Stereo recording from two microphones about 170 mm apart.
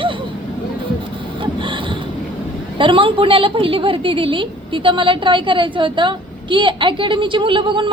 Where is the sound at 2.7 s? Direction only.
30° right (ahead or behind).